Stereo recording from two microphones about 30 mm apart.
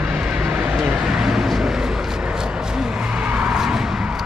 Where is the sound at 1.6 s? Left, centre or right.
Centre.